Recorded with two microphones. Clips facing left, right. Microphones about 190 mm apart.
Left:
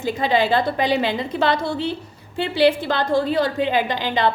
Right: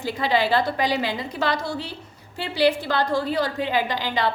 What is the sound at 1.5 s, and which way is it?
Speech, 55° left (ahead or behind).